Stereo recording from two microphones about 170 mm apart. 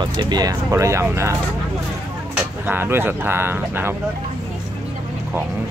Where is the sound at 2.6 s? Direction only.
10° right (ahead or behind).